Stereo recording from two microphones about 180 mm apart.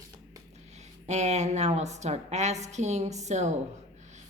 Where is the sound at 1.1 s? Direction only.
40° right (ahead or behind).